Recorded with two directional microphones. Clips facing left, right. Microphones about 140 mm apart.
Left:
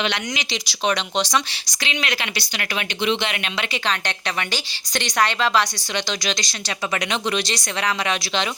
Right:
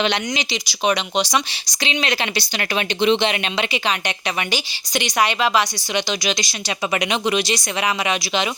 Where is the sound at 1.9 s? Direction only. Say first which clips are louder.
Right 4 dB; 25° right (ahead or behind).